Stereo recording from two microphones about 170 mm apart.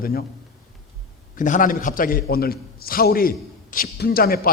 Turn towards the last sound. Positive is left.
turn(degrees=60)  # may be behind; listen again after turning